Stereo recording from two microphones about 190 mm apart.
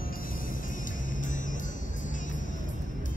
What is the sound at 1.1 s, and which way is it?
Music, 45° left (ahead or behind).